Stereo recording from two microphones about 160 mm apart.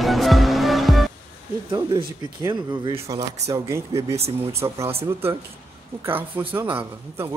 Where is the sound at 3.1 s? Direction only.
20° right (ahead or behind).